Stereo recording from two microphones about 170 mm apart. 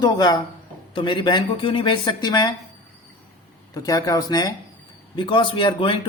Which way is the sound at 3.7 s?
20° left (ahead or behind).